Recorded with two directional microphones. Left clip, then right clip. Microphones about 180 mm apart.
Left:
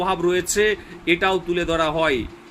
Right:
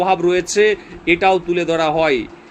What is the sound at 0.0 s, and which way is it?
Speech, 15° left (ahead or behind).